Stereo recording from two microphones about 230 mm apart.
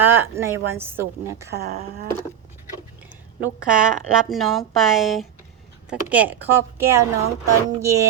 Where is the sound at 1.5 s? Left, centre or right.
Right.